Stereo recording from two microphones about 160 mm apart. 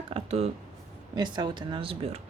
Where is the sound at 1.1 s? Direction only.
25° right (ahead or behind).